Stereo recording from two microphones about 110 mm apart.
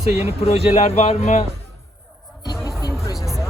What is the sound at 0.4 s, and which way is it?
Speech, 70° left (ahead or behind).